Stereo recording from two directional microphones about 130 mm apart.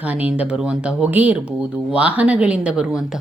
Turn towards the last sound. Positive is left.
turn(degrees=-5)  # may be behind; listen again after turning